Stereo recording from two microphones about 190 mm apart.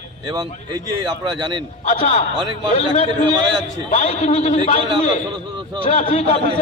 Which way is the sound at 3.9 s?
30° left (ahead or behind).